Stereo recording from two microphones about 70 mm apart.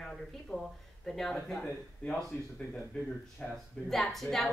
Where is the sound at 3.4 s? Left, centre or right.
Centre.